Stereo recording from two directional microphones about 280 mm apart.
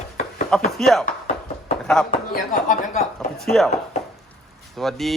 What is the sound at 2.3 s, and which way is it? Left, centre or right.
Speech, left.